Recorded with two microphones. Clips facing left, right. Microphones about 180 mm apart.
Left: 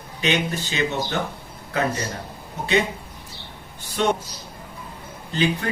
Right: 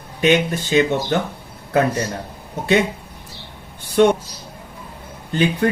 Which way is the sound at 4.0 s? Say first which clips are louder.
Right 8 dB; 55° right (ahead or behind).